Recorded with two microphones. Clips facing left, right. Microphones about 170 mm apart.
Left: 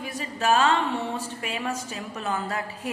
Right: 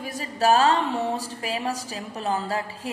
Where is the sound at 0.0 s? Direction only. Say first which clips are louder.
Right 4 dB; 40° right (ahead or behind).